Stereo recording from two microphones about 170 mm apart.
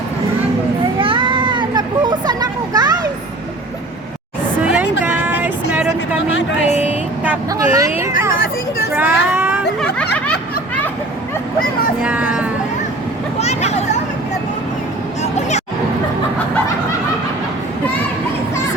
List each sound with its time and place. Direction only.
0.9 s children playing: 30° right (ahead or behind)
4.6 s a sound: 10° right (ahead or behind)
5.0 s vehicle: 10° right (ahead or behind)
9.0 s child singing: 10° right (ahead or behind)
12.0 s vehicle: 10° right (ahead or behind)
13.4 s vehicle: 40° left (ahead or behind)
15.2 s vehicle: 40° left (ahead or behind)